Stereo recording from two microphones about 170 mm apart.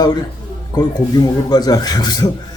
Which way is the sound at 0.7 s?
25° left (ahead or behind).